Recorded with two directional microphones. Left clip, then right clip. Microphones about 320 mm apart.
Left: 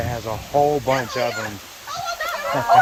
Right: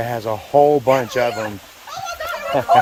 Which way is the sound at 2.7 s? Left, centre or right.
Right.